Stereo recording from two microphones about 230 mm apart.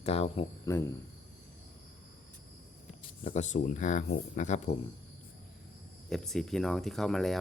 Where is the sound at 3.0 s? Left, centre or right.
Left.